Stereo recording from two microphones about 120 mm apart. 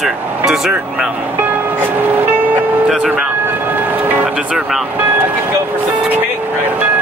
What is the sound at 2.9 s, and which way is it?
Vehicle, 5° right (ahead or behind).